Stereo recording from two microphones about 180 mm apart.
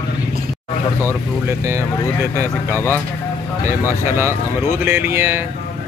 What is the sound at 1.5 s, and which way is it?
Speech, 15° right (ahead or behind).